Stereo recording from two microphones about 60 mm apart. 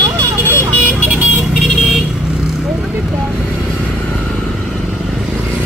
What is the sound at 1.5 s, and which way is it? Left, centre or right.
Vehicle, centre.